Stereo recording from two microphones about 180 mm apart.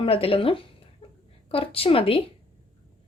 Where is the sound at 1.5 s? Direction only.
30° left (ahead or behind).